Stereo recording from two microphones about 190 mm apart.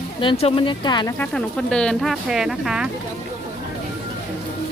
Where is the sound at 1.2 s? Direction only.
5° left (ahead or behind).